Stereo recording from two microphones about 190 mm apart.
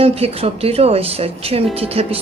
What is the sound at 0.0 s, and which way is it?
Speech, 30° right (ahead or behind).